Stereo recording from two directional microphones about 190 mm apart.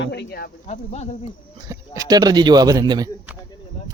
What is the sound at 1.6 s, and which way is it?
Speech, 15° right (ahead or behind).